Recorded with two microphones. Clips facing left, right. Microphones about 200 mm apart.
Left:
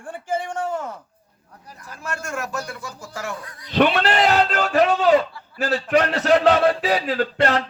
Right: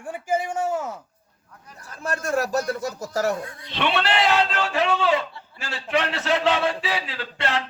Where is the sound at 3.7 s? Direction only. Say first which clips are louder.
Left 6 dB; 45° left (ahead or behind).